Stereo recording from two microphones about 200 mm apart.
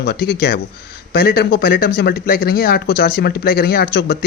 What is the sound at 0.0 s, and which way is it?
Speech, 50° left (ahead or behind).